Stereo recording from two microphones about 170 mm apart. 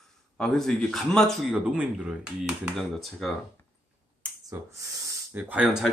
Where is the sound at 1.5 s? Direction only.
10° right (ahead or behind).